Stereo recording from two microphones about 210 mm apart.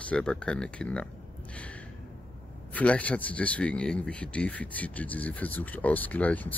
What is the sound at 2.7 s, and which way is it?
Speech, 5° left (ahead or behind).